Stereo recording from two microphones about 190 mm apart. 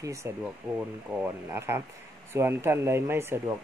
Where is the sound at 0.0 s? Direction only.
15° right (ahead or behind).